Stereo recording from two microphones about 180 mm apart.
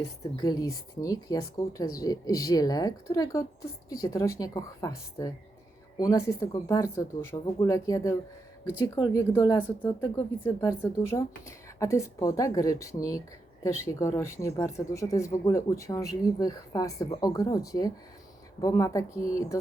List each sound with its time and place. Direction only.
0.4 s speech: 20° left (ahead or behind)